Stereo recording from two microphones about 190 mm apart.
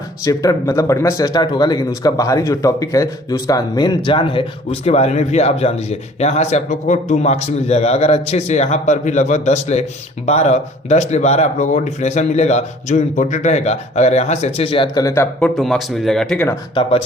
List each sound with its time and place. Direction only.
0.3 s speech: 15° left (ahead or behind)